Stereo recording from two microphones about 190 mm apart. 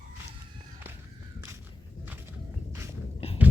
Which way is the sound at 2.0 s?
10° right (ahead or behind).